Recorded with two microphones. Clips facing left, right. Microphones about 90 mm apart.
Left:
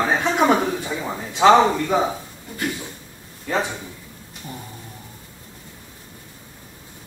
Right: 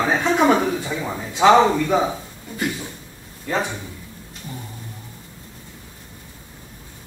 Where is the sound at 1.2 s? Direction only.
15° right (ahead or behind).